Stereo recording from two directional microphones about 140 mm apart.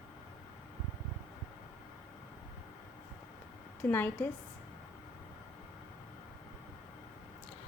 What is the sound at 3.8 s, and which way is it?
Speech, 15° left (ahead or behind).